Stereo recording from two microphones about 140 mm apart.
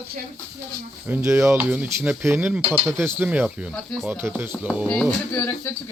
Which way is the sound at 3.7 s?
5° left (ahead or behind).